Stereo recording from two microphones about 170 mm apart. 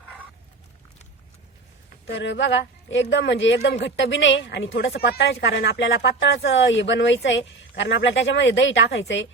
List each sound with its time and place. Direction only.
2.0 s a woman's voice: 90° left